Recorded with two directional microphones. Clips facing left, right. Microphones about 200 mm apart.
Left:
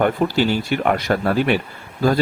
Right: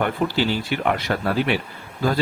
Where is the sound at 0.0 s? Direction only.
50° left (ahead or behind).